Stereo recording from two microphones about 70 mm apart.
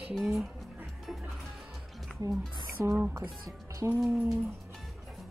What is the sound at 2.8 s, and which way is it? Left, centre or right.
Speech, right.